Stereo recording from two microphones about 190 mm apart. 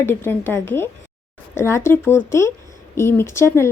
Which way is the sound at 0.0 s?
10° left (ahead or behind).